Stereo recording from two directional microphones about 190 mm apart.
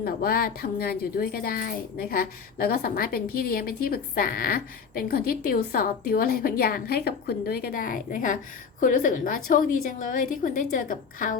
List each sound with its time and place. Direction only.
0.0 s speech: 50° left (ahead or behind)